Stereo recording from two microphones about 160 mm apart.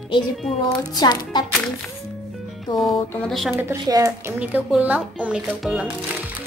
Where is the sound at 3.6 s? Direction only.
20° right (ahead or behind).